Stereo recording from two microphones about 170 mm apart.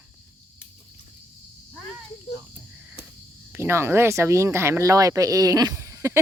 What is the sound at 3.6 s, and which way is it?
Speech, 15° right (ahead or behind).